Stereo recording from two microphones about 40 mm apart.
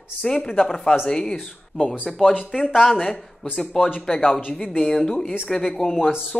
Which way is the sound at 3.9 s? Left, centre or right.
Centre.